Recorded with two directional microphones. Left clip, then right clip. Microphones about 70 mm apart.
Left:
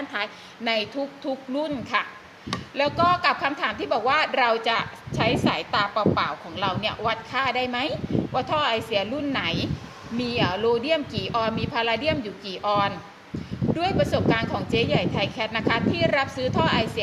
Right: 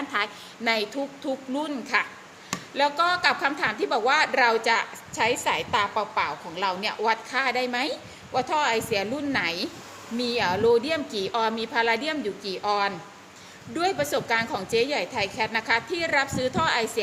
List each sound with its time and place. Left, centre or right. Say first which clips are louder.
0.1 s a woman's voice: right 2 dB; right